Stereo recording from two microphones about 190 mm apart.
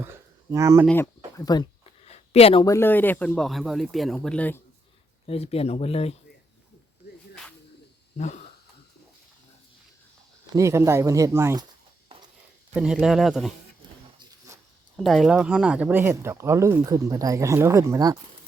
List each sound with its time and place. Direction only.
0.0 s a sound: 15° right (ahead or behind)
0.9 s speech: 15° left (ahead or behind)
2.0 s a sound: 35° left (ahead or behind)
2.6 s speech: 10° left (ahead or behind)
5.2 s speech: 30° left (ahead or behind)
10.5 s speech: 15° right (ahead or behind)
12.7 s speech: 5° right (ahead or behind)
14.2 s a sound: 15° right (ahead or behind)
14.9 s speech: centre (ahead or behind); by 18.2 s 15° right (ahead or behind)